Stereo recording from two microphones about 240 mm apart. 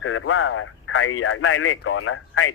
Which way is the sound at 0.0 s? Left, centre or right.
Left.